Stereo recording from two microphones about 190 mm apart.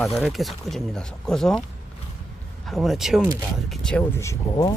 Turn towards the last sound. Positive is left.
turn(degrees=15)  # may be behind; listen again after turning